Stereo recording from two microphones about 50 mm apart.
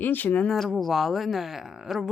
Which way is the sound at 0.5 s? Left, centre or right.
Centre.